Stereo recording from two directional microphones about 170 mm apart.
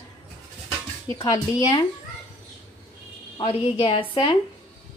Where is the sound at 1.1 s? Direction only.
20° left (ahead or behind).